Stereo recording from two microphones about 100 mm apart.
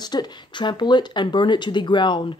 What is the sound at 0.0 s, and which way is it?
Speech, 45° left (ahead or behind).